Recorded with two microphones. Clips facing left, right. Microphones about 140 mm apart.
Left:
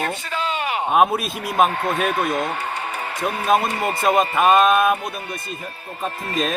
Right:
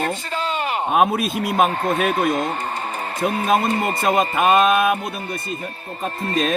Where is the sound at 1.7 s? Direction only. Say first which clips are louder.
Right 2 dB; 25° right (ahead or behind).